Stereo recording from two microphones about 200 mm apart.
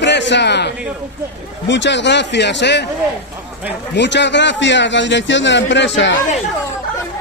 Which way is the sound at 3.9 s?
60° left (ahead or behind).